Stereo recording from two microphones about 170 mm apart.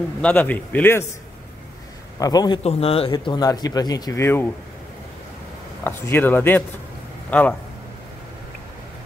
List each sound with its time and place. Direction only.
0.2 s speech: 10° left (ahead or behind)
2.1 s speech: 20° left (ahead or behind)
2.6 s speech: 35° left (ahead or behind); by 4.5 s 15° left (ahead or behind)
5.9 s speech: 10° left (ahead or behind)